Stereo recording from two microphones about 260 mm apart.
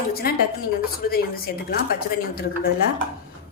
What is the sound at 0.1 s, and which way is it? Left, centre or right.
A woman's voice, left.